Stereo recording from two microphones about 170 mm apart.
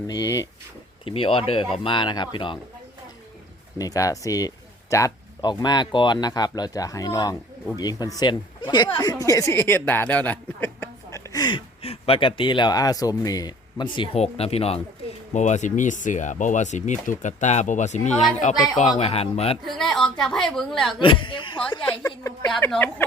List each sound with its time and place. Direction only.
0.1 s speech: 20° left (ahead or behind)
1.0 s speech: 35° left (ahead or behind)
3.8 s speech: 20° left (ahead or behind); by 19.5 s 35° left (ahead or behind)
19.6 s a woman's voice: centre (ahead or behind)
21.0 s speech: 30° left (ahead or behind)
22.0 s speech: 20° left (ahead or behind)